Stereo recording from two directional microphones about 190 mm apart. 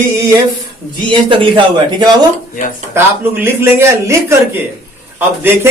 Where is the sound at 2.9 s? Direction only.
10° right (ahead or behind).